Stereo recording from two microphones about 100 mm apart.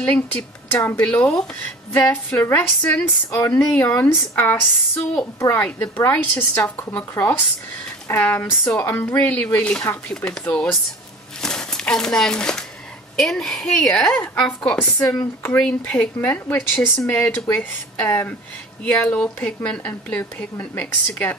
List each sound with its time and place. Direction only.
0.1 s a woman's voice: 15° left (ahead or behind)
2.5 s a woman's voice: 15° left (ahead or behind)
11.4 s crumpling: 5° left (ahead or behind)
13.2 s speech: 5° left (ahead or behind)